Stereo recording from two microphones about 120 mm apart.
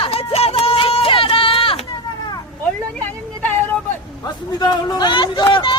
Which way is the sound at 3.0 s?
15° left (ahead or behind).